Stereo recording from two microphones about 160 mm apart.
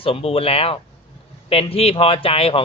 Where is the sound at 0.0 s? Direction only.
35° left (ahead or behind).